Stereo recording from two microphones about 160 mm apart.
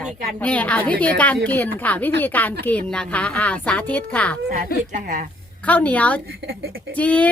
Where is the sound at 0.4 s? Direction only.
10° left (ahead or behind).